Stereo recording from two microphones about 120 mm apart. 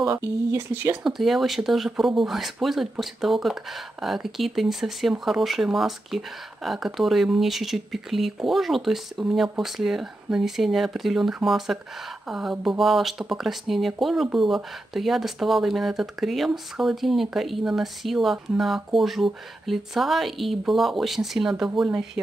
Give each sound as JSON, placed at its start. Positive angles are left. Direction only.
{"t": 0.0, "sound": "speech", "side_deg": -25}
{"t": 1.0, "sound": "speech", "side_deg": 0}